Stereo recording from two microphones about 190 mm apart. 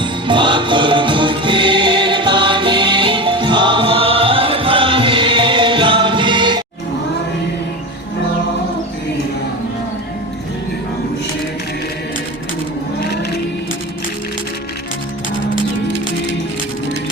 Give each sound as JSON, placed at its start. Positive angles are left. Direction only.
{"t": 0.0, "sound": "music", "side_deg": -25}